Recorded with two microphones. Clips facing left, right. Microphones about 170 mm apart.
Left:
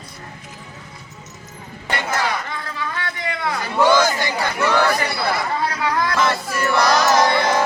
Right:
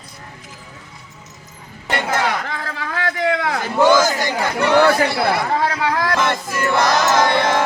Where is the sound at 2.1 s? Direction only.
75° right (ahead or behind).